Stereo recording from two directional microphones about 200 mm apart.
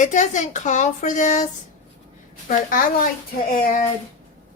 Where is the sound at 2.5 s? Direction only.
45° left (ahead or behind).